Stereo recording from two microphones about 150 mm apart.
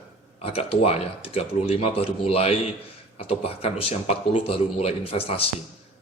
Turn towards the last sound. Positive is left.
turn(degrees=40)  # may be behind; listen again after turning